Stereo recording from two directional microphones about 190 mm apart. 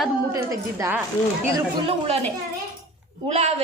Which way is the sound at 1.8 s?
30° right (ahead or behind).